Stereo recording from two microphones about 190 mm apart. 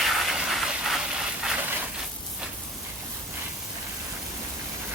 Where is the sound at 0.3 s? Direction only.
Centre (ahead or behind).